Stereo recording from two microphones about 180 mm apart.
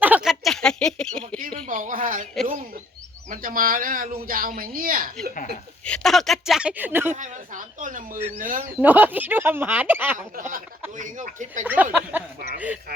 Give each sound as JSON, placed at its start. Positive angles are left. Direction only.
{"t": 0.0, "sound": "a sound", "side_deg": -5}
{"t": 1.6, "sound": "speech", "side_deg": -45}
{"t": 3.2, "sound": "speech", "side_deg": -50}
{"t": 5.8, "sound": "speech", "side_deg": 5}
{"t": 7.1, "sound": "speech", "side_deg": -45}
{"t": 8.8, "sound": "speech", "side_deg": -10}
{"t": 10.9, "sound": "speech", "side_deg": -45}
{"t": 11.6, "sound": "speech", "side_deg": -10}